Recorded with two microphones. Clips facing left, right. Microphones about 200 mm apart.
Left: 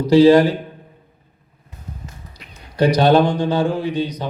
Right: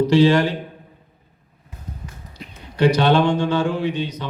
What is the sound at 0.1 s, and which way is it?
Speech, 35° left (ahead or behind).